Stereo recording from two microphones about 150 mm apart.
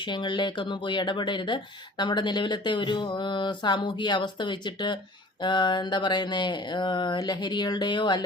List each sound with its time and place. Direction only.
0.0 s speech: 30° left (ahead or behind)